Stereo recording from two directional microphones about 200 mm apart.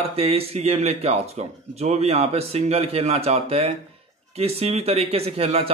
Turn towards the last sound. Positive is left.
turn(degrees=-30)  # may be behind; listen again after turning